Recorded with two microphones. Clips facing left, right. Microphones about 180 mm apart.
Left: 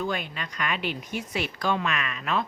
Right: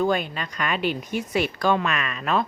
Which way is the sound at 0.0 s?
40° right (ahead or behind).